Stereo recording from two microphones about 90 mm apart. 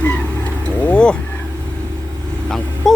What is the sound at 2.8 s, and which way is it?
Wail, 5° left (ahead or behind).